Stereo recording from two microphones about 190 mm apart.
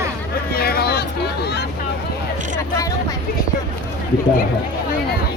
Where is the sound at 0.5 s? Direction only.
55° left (ahead or behind).